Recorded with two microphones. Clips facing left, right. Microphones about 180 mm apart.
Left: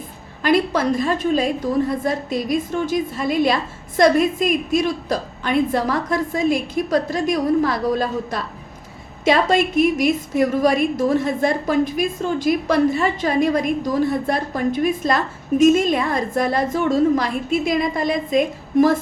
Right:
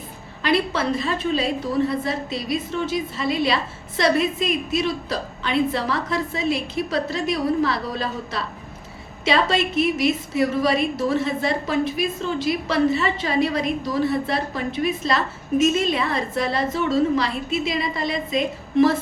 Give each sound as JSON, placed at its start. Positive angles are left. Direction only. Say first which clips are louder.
{"t": 0.4, "sound": "a woman's voice", "louder": "left 4 dB", "side_deg": 45}